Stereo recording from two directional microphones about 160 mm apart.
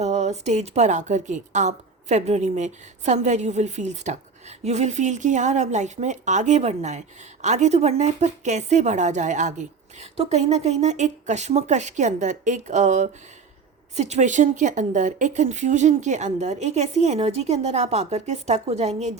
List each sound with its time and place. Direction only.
0.0 s a woman's voice: 45° right (ahead or behind)